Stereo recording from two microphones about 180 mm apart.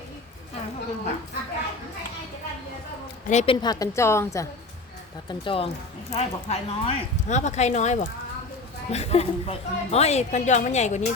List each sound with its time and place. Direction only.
3.2 s a woman's voice: 35° left (ahead or behind); by 4.4 s 15° left (ahead or behind)
5.3 s speech: 30° left (ahead or behind)